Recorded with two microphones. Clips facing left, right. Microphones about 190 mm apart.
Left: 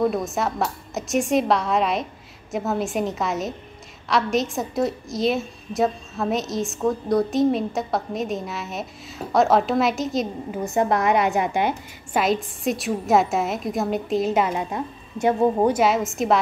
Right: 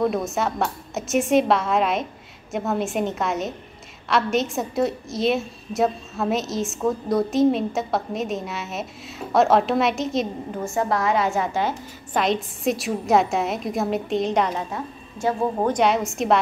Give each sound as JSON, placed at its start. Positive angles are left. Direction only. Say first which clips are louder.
{"t": 0.0, "sound": "a woman's voice", "louder": "even", "side_deg": 0}
{"t": 10.6, "sound": "a woman's voice", "louder": "left 2 dB", "side_deg": 20}
{"t": 12.2, "sound": "a woman's voice", "louder": "left 1 dB", "side_deg": 0}
{"t": 15.7, "sound": "a woman's voice", "louder": "even", "side_deg": 0}